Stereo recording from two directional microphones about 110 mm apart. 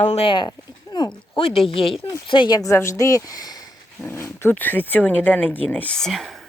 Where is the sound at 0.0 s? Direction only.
90° left.